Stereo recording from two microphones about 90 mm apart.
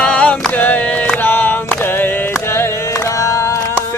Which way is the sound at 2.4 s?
30° left (ahead or behind).